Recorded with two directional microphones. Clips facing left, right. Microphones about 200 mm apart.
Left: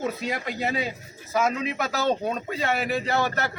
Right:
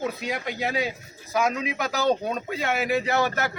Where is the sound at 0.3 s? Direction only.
Centre (ahead or behind).